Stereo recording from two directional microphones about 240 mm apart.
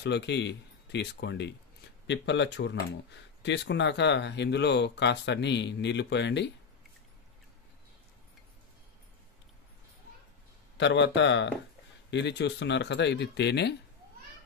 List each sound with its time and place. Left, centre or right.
0.0 s speech: left
10.8 s speech: left